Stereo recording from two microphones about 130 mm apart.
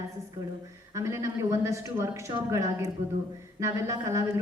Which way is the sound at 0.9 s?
20° right (ahead or behind).